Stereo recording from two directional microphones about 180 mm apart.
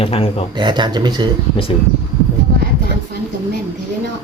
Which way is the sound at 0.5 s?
25° right (ahead or behind).